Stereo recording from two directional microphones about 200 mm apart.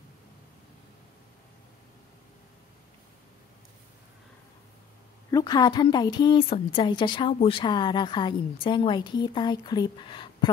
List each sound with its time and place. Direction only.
5.3 s a woman's voice: 20° left (ahead or behind)